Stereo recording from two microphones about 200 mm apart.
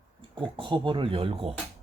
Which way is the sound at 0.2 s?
25° right (ahead or behind).